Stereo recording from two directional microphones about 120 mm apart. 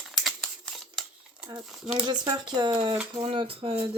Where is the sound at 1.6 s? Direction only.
5° right (ahead or behind).